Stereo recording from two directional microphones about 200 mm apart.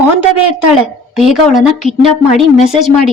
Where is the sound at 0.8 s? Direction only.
Centre (ahead or behind).